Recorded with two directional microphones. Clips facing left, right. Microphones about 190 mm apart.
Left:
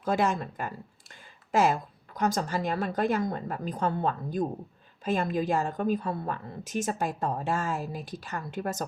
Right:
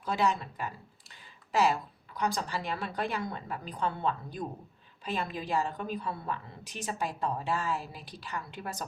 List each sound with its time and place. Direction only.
0.0 s a woman's voice: 45° left (ahead or behind)